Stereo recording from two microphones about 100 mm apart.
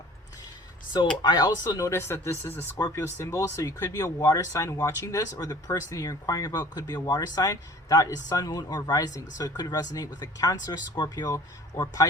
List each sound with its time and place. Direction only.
0.9 s speech: 45° left (ahead or behind)